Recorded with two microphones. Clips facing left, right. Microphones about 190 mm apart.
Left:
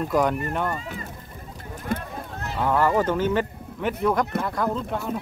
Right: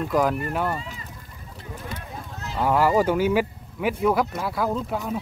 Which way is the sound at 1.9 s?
55° left (ahead or behind).